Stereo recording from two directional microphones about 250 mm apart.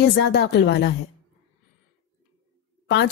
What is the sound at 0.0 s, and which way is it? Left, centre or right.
Speech, left.